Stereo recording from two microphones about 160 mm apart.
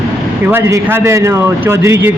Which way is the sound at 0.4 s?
15° right (ahead or behind).